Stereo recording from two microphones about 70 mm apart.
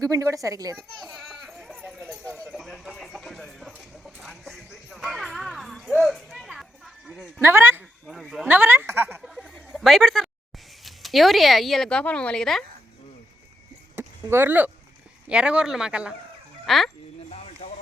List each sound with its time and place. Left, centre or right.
0.0 s a woman's voice: right
0.8 s speech: centre
1.0 s a sound: centre
2.5 s chicken: centre
4.0 s music: centre
7.4 s speech: right
8.0 s speech: centre
8.4 s a woman's voice: right
9.2 s a sound: centre
10.8 s speech: centre
11.9 s speech: centre
13.9 s a sound: right
15.3 s speech: centre
16.6 s speech: centre